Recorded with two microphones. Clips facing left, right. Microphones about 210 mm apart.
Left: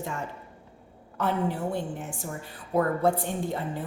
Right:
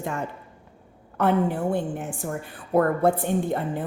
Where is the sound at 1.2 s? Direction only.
55° right (ahead or behind).